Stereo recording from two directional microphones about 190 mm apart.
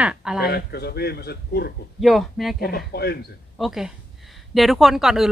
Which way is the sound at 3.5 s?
Centre (ahead or behind).